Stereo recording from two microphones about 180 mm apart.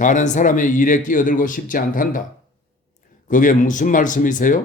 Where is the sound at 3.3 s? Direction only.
45° left (ahead or behind).